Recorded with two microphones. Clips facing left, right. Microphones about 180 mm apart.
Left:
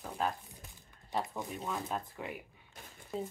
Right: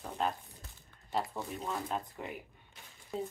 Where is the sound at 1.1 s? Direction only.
Centre (ahead or behind).